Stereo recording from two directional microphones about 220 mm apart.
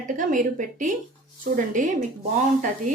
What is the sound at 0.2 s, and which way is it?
A woman's voice, 35° right (ahead or behind).